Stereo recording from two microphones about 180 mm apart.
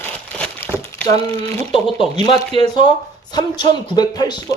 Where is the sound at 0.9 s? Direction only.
15° left (ahead or behind).